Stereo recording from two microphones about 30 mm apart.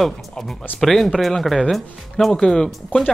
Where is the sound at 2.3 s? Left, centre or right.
Left.